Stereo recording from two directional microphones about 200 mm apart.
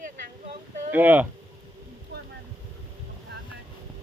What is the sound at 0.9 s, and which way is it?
Speech, 10° right (ahead or behind).